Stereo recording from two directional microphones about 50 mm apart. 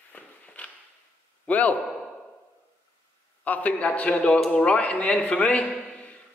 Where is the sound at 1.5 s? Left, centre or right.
Left.